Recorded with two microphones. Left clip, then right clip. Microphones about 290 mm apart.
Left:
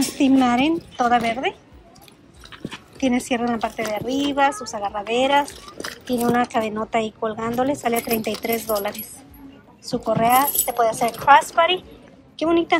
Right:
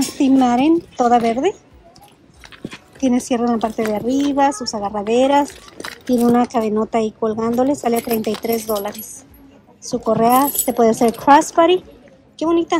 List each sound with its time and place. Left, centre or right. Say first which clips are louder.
0.2 s a woman's voice: right 3 dB; centre
2.5 s chewing: right 1 dB; centre
3.0 s a woman's voice: right 3 dB; centre